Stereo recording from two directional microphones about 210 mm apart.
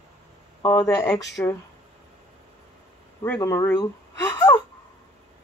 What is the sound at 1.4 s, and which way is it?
Speech, 10° left (ahead or behind).